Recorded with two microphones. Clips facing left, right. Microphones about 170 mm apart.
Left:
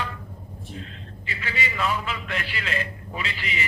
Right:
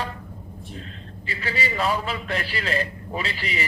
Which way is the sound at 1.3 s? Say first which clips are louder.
Right 3 dB; 35° right (ahead or behind).